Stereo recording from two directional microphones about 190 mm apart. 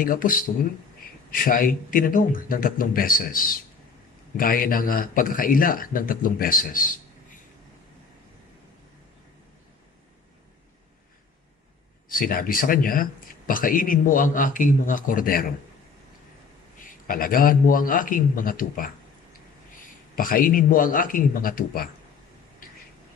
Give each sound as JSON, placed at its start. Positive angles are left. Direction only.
{"t": 0.0, "sound": "speech", "side_deg": 45}
{"t": 12.1, "sound": "speech", "side_deg": 50}
{"t": 17.1, "sound": "speech", "side_deg": 50}
{"t": 20.2, "sound": "speech", "side_deg": 45}